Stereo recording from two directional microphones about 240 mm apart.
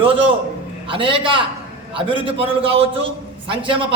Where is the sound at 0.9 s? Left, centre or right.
Right.